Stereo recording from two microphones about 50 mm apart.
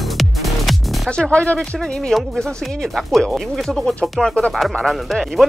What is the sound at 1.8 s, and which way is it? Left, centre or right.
Speech, centre.